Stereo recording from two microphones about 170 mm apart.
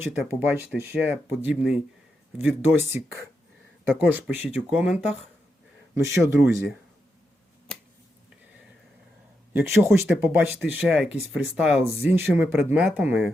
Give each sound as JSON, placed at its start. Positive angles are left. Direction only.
{"t": 0.0, "sound": "speech", "side_deg": -10}
{"t": 4.1, "sound": "speech", "side_deg": -10}
{"t": 5.9, "sound": "speech", "side_deg": -15}
{"t": 9.5, "sound": "speech", "side_deg": -15}